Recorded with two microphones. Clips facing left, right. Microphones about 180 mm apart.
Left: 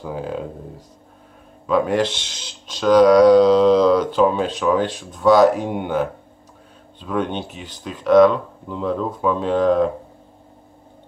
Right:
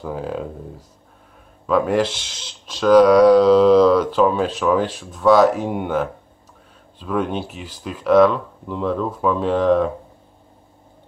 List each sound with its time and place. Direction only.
0.0 s speech: centre (ahead or behind)